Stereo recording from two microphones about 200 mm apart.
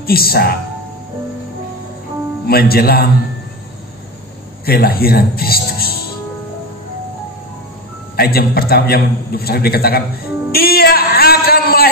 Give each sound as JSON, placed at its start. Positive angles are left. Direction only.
{"t": 0.0, "sound": "a man's voice", "side_deg": 50}
{"t": 2.4, "sound": "a man's voice", "side_deg": 50}
{"t": 4.6, "sound": "speech", "side_deg": 50}
{"t": 8.2, "sound": "a man's voice", "side_deg": 50}
{"t": 10.5, "sound": "a sound", "side_deg": 50}